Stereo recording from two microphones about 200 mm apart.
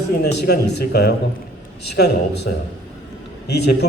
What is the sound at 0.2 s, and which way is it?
A man's voice, 50° left (ahead or behind).